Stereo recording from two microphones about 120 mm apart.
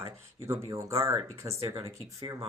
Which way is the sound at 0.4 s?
25° right (ahead or behind).